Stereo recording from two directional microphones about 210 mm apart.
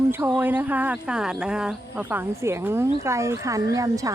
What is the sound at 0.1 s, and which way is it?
Speech, 10° right (ahead or behind).